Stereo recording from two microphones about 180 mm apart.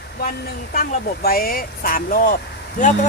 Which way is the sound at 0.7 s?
55° left (ahead or behind).